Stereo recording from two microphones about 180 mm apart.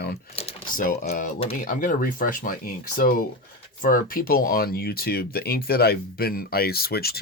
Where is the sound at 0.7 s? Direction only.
45° left (ahead or behind).